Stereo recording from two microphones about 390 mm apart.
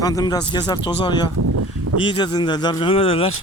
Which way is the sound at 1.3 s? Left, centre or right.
Right.